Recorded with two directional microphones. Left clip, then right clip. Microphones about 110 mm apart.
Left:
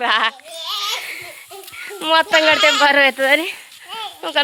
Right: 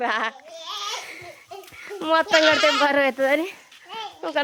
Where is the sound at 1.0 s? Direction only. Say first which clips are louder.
Left 8 dB; centre (ahead or behind).